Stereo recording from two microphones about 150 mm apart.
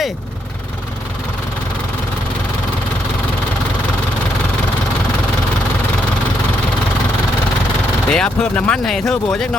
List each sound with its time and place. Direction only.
8.1 s speech: 5° left (ahead or behind)